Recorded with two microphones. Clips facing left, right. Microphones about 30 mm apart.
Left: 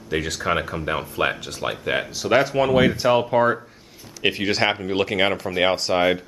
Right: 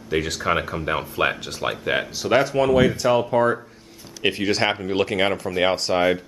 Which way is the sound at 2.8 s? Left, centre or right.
Centre.